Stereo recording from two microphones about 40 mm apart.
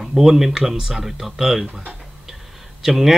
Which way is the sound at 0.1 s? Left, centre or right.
Centre.